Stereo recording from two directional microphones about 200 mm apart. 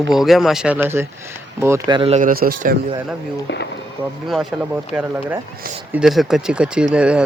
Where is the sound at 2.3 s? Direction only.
45° right (ahead or behind).